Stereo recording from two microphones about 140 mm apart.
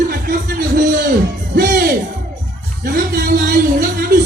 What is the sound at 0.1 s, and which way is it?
Music, 90° right.